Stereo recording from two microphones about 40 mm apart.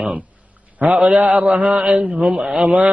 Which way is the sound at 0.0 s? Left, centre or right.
Right.